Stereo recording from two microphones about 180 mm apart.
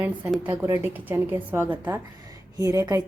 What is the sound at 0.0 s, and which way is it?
A woman's voice, 10° right (ahead or behind).